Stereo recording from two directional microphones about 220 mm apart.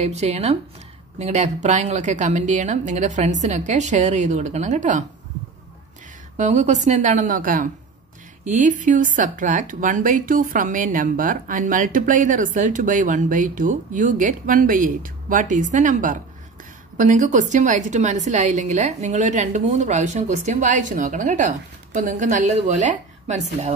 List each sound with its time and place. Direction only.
0.0 s speech: 30° right (ahead or behind)
6.3 s speech: 30° right (ahead or behind)